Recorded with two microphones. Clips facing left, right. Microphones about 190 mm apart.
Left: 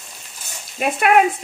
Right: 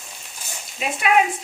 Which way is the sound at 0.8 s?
55° left (ahead or behind).